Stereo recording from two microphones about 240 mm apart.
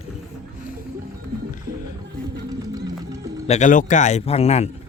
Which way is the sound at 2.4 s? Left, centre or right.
Centre.